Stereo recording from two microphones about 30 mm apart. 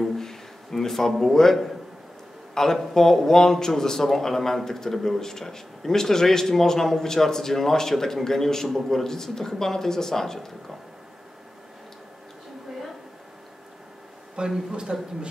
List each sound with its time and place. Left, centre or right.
0.2 s a sound: centre
1.3 s speech: centre
14.4 s a man's voice: right